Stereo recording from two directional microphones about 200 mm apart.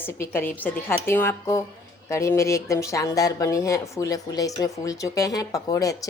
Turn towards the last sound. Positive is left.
turn(degrees=15)  # may be behind; listen again after turning